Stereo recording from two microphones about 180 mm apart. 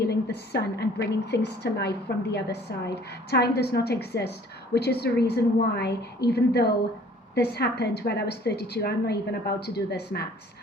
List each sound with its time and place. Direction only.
0.1 s a woman's voice: 65° left (ahead or behind)